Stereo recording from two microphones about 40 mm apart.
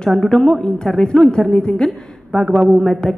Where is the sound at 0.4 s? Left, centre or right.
Centre.